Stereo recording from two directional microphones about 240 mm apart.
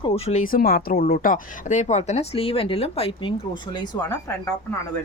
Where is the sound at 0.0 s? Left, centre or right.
Left.